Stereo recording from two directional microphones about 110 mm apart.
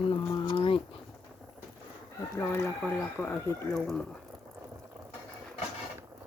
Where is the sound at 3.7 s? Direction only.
Centre (ahead or behind).